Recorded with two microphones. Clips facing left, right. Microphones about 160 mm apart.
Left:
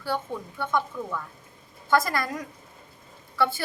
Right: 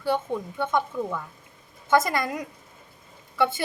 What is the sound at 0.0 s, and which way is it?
A woman's voice, 20° right (ahead or behind).